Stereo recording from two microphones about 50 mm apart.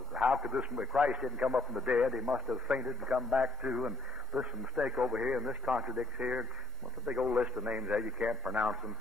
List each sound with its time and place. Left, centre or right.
0.1 s speech: right